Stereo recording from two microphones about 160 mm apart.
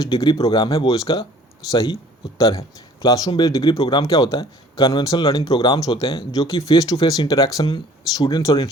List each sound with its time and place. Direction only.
0.0 s speech: 25° left (ahead or behind)
2.5 s speech: 35° left (ahead or behind)
3.1 s speech: 25° left (ahead or behind)